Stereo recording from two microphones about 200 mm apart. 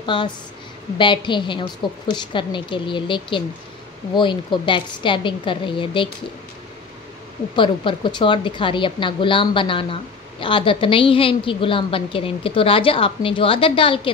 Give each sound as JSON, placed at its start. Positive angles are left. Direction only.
{"t": 0.0, "sound": "a woman's voice", "side_deg": 25}
{"t": 7.5, "sound": "a woman's voice", "side_deg": 25}